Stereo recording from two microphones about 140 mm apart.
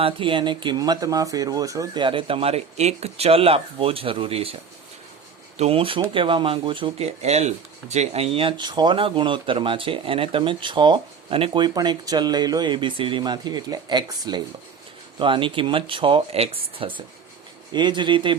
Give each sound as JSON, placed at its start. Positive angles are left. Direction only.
{"t": 0.0, "sound": "speech", "side_deg": -35}
{"t": 2.0, "sound": "speech", "side_deg": -35}
{"t": 5.5, "sound": "speech", "side_deg": -45}
{"t": 7.2, "sound": "speech", "side_deg": -50}